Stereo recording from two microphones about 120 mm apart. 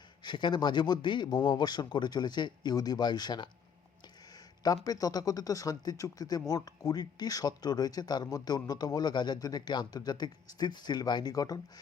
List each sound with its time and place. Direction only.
0.2 s speech: 40° left (ahead or behind)
4.6 s speech: 30° left (ahead or behind)